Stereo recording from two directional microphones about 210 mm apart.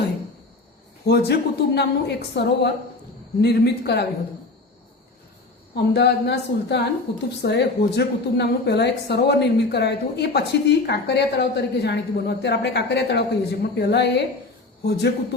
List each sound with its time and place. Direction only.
1.0 s a woman's voice: 50° left (ahead or behind)
5.7 s a woman's voice: 50° left (ahead or behind)